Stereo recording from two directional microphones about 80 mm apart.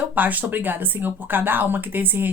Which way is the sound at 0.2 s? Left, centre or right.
Right.